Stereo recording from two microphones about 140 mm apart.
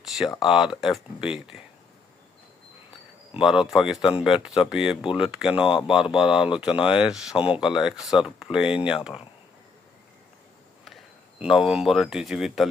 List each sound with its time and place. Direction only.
0.4 s speech: 5° right (ahead or behind)
3.4 s speech: 5° right (ahead or behind)
7.3 s speech: 40° left (ahead or behind)
7.6 s speech: 5° right (ahead or behind)
10.8 s speech: centre (ahead or behind)